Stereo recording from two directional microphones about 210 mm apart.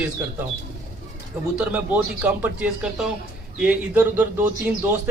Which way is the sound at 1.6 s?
5° right (ahead or behind).